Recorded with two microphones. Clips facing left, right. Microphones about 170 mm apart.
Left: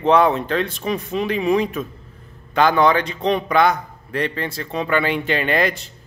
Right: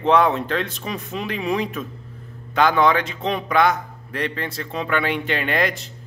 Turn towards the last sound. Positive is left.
turn(degrees=0)  # may be behind; listen again after turning